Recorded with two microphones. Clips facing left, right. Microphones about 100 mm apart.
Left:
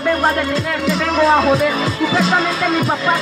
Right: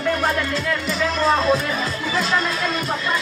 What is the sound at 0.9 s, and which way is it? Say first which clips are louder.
Speech: left 6 dB; 90° left.